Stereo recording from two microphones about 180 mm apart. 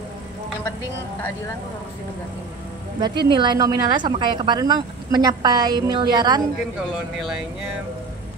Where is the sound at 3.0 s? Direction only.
25° right (ahead or behind).